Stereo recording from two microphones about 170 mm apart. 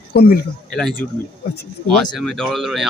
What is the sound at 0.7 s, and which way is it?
Speech, 5° left (ahead or behind).